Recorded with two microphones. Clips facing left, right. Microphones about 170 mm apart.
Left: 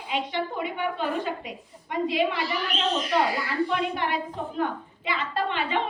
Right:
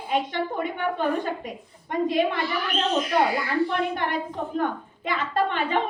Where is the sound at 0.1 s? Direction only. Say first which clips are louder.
Right 3 dB; 50° right (ahead or behind).